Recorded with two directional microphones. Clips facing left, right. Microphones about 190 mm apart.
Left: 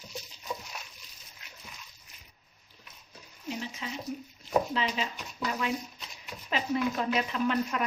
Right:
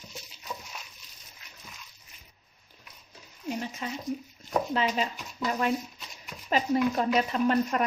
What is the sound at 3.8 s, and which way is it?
Speech, 50° right (ahead or behind).